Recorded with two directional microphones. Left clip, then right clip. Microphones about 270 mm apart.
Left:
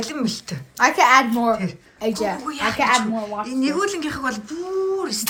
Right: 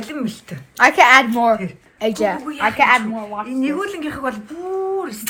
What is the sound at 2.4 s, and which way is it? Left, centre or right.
Speech, centre.